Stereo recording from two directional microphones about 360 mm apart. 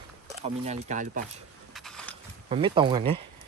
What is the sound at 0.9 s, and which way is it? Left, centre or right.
Speech, right.